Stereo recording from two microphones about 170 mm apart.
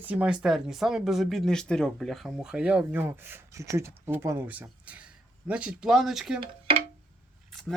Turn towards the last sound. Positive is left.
turn(degrees=5)  # may be behind; listen again after turning